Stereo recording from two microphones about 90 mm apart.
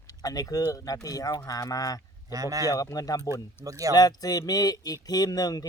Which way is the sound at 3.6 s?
40° right (ahead or behind).